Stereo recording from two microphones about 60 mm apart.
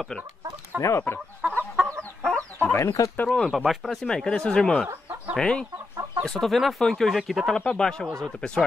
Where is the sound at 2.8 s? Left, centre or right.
Left.